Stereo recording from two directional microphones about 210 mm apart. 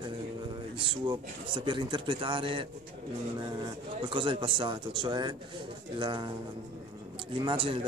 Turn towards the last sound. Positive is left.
turn(degrees=-25)  # may be behind; listen again after turning